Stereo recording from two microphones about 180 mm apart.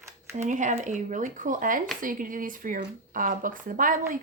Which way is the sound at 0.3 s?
45° right (ahead or behind).